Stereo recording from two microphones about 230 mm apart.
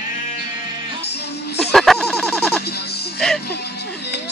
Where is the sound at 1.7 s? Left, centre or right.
Centre.